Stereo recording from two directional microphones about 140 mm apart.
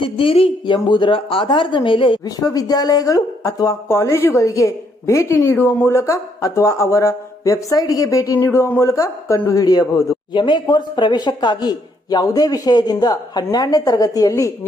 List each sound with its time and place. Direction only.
0.0 s speech: 40° left (ahead or behind)
2.2 s speech: 25° left (ahead or behind)